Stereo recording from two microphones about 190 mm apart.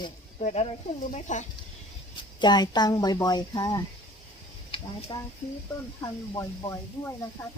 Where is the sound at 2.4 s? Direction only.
20° left (ahead or behind).